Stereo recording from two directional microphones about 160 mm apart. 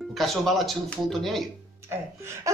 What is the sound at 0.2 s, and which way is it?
Speech, centre (ahead or behind).